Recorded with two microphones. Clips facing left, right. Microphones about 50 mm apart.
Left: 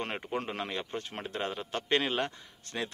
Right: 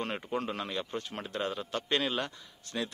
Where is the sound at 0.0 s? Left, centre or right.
Left.